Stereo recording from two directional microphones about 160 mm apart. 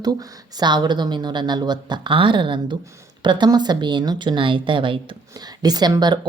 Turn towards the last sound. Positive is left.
turn(degrees=-25)  # may be behind; listen again after turning